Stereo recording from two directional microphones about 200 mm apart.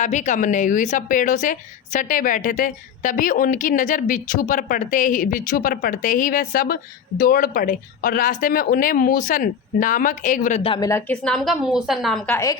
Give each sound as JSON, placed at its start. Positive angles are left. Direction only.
{"t": 0.0, "sound": "a woman's voice", "side_deg": 35}
{"t": 10.6, "sound": "a woman's voice", "side_deg": 25}
{"t": 10.8, "sound": "a woman's voice", "side_deg": 10}